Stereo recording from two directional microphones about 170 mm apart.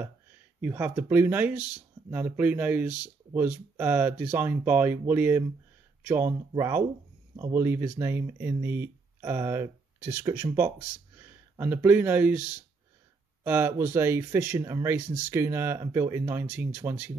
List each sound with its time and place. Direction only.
0.6 s speech: 10° right (ahead or behind)